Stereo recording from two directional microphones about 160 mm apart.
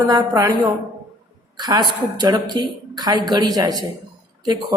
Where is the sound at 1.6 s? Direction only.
25° right (ahead or behind).